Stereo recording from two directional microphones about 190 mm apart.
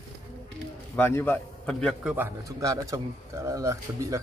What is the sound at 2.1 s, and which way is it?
A man's voice, 15° right (ahead or behind).